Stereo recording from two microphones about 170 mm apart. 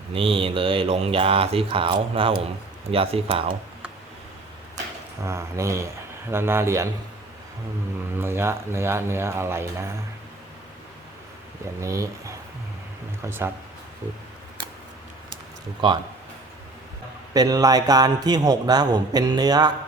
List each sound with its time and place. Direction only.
0.1 s speech: 35° right (ahead or behind)
5.2 s speech: 15° right (ahead or behind)
8.1 s speech: 15° right (ahead or behind)
11.8 s a man's voice: 20° right (ahead or behind)
13.2 s speech: 15° right (ahead or behind)
17.3 s a man's voice: 20° right (ahead or behind)